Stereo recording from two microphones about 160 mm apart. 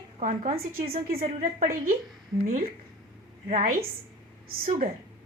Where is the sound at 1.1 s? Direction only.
45° right (ahead or behind); by 3.8 s 60° right (ahead or behind).